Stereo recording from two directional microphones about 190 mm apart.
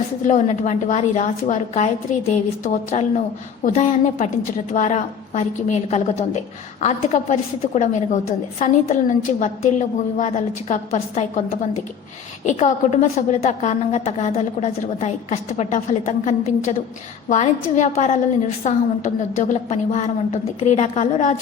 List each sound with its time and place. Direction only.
0.3 s a woman's voice: 40° left (ahead or behind)
12.5 s a woman's voice: 40° left (ahead or behind)